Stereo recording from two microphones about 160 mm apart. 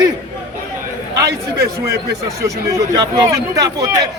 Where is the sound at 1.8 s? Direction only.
20° right (ahead or behind).